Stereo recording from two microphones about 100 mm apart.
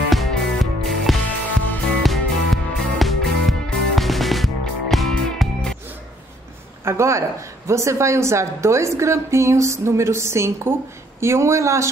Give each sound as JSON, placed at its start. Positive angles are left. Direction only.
{"t": 0.1, "sound": "music", "side_deg": 0}
{"t": 6.8, "sound": "a woman's voice", "side_deg": -25}